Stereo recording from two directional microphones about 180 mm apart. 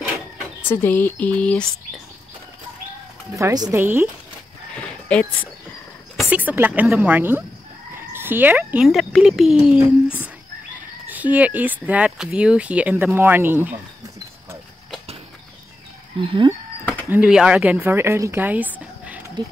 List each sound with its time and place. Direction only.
0.6 s speech: 10° left (ahead or behind)
3.3 s speech: 20° right (ahead or behind)
4.7 s a sound: 5° left (ahead or behind)
6.1 s speech: 10° right (ahead or behind)
11.1 s speech: 10° right (ahead or behind)
16.2 s speech: 25° right (ahead or behind)
17.1 s speech: 5° right (ahead or behind)